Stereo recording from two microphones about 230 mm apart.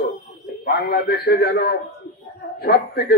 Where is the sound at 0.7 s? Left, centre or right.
Left.